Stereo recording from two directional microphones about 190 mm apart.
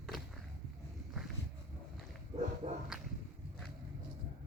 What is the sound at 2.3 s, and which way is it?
Bow-wow, 35° right (ahead or behind).